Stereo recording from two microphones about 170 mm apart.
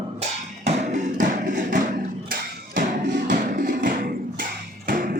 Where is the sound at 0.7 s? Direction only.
45° right (ahead or behind).